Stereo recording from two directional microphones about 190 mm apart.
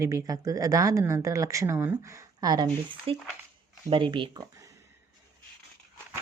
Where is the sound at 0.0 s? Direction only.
15° right (ahead or behind).